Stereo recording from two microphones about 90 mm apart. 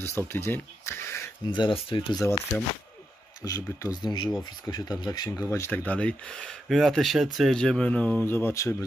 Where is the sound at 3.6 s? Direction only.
35° left (ahead or behind).